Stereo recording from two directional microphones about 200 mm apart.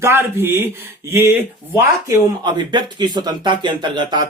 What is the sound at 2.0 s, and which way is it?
Speech, 20° right (ahead or behind).